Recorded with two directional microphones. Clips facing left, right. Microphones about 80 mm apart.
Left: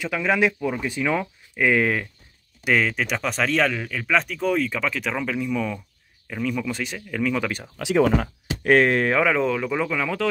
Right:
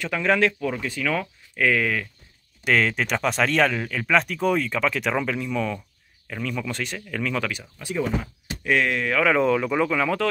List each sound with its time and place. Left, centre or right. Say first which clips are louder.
0.0 s speech: even; centre; by 2.0 s left
2.6 s speech: even; centre
7.8 s speech: left 7 dB; left
8.6 s speech: left 5 dB; left
9.2 s speech: right 1 dB; centre